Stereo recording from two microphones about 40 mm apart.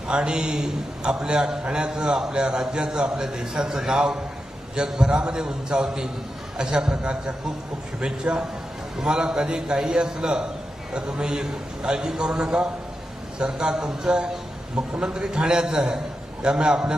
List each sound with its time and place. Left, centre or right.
0.1 s a man's voice: right